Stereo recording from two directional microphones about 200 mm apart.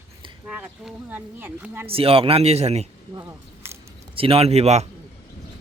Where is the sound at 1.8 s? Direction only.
30° right (ahead or behind).